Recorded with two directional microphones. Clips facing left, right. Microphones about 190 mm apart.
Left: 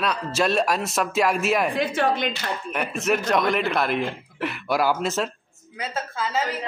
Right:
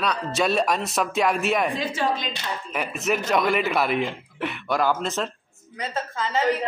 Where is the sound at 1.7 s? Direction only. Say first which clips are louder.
Left 3 dB; 65° left (ahead or behind).